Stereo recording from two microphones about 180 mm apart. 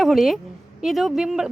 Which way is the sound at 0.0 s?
Centre (ahead or behind).